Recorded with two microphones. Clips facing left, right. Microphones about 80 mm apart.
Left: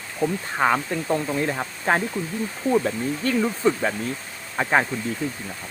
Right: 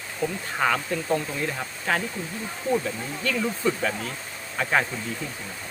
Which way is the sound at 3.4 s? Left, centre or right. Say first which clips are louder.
Left 3 dB; left.